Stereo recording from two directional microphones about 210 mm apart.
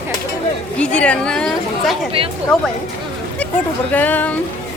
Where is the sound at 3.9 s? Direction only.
10° left (ahead or behind).